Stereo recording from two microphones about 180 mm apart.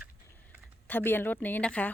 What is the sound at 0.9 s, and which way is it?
A woman's voice, 10° left (ahead or behind).